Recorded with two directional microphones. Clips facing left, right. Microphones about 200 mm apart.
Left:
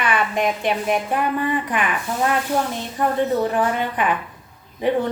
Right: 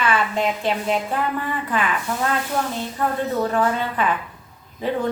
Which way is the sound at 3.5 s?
15° left (ahead or behind).